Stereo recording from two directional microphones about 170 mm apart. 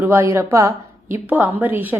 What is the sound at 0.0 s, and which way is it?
Speech, 15° right (ahead or behind).